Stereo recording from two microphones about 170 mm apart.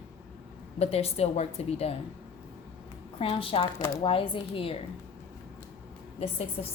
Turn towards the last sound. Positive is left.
turn(degrees=40)  # may be behind; listen again after turning